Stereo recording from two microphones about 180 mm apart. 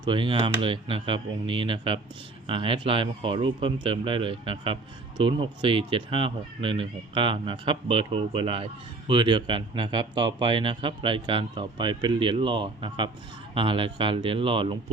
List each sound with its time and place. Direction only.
0.0 s a man's voice: 25° right (ahead or behind)